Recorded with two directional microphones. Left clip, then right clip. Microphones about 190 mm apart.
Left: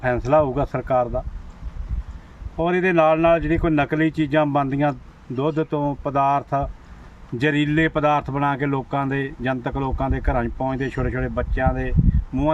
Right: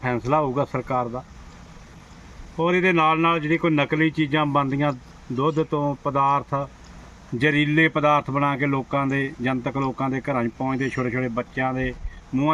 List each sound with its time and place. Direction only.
0.0 s speech: 20° left (ahead or behind)
2.6 s speech: 20° left (ahead or behind)